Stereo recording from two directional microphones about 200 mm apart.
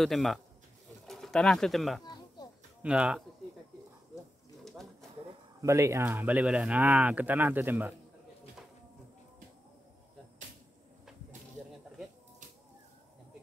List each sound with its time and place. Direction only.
0.0 s speech: centre (ahead or behind)
2.0 s a sound: 20° left (ahead or behind)
2.8 s speech: 5° right (ahead or behind)
5.6 s speech: 15° right (ahead or behind)